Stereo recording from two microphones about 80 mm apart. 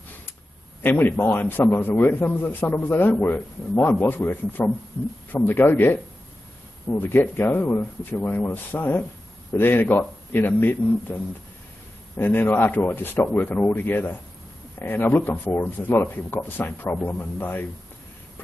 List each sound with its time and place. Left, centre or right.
0.8 s a man's voice: left
12.2 s a man's voice: left